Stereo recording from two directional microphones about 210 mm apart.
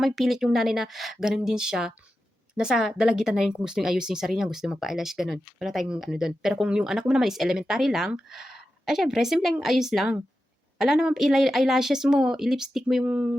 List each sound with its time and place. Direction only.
0.0 s speech: centre (ahead or behind)